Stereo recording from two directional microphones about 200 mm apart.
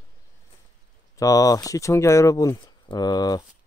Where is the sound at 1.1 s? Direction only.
15° left (ahead or behind).